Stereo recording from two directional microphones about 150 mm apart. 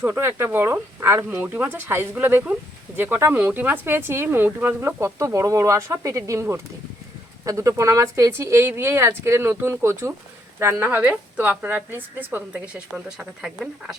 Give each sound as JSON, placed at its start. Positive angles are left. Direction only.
{"t": 0.0, "sound": "speech", "side_deg": -15}